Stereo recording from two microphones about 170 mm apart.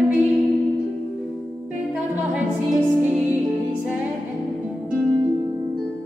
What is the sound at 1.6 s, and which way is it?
Music, 10° right (ahead or behind).